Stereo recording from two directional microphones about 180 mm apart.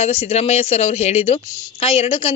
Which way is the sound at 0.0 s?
35° left (ahead or behind).